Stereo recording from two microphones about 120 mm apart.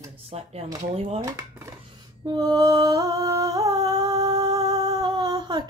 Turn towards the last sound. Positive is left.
turn(degrees=-35)  # may be behind; listen again after turning